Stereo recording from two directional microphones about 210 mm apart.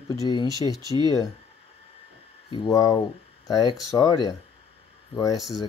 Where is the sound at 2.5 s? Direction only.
20° left (ahead or behind).